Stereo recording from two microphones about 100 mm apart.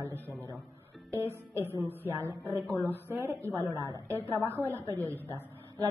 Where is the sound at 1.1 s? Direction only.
30° right (ahead or behind).